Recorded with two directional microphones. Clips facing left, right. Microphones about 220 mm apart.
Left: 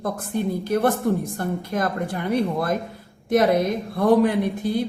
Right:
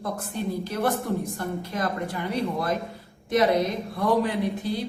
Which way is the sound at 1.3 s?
50° left (ahead or behind).